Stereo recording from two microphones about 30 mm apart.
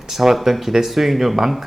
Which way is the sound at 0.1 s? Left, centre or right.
Centre.